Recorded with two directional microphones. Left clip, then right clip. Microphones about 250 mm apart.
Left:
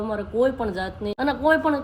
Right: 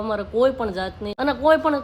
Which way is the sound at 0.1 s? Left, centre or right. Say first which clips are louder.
Right 3 dB; centre.